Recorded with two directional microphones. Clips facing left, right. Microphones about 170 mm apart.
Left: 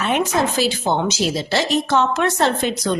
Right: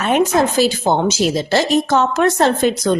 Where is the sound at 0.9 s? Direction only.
45° right (ahead or behind).